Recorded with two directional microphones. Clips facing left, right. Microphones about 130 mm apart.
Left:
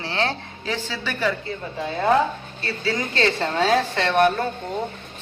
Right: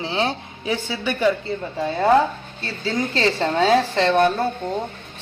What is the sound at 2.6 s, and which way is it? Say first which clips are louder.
A woman's voice: right 1 dB; 25° right (ahead or behind).